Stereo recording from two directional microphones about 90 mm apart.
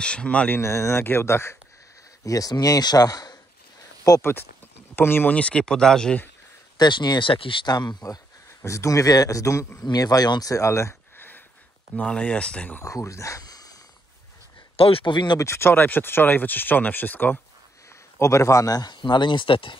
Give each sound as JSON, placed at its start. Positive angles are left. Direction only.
{"t": 0.0, "sound": "speech", "side_deg": 10}
{"t": 0.6, "sound": "speech", "side_deg": 30}
{"t": 2.2, "sound": "speech", "side_deg": 40}
{"t": 4.9, "sound": "speech", "side_deg": 25}
{"t": 6.8, "sound": "speech", "side_deg": 55}
{"t": 7.6, "sound": "speech", "side_deg": 50}
{"t": 8.6, "sound": "speech", "side_deg": 35}
{"t": 12.8, "sound": "speech", "side_deg": 35}
{"t": 14.8, "sound": "speech", "side_deg": 90}
{"t": 15.3, "sound": "speech", "side_deg": 30}
{"t": 18.2, "sound": "speech", "side_deg": 35}